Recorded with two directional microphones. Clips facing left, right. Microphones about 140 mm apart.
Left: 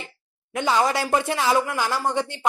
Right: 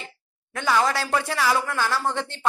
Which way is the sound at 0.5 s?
20° left (ahead or behind).